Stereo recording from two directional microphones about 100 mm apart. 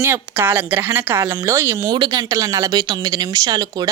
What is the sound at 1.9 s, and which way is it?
A woman's voice, 45° right (ahead or behind).